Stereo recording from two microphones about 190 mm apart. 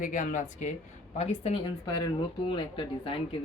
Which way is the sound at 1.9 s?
20° left (ahead or behind).